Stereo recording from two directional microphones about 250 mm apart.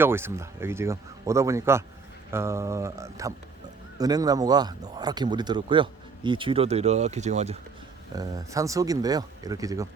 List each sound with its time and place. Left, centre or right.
0.0 s speech: centre; by 7.6 s right
8.1 s speech: centre